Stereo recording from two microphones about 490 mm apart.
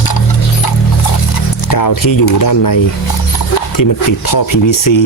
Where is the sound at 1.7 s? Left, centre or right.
Left.